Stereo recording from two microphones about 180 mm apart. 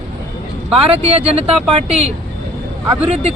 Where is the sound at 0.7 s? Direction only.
35° right (ahead or behind).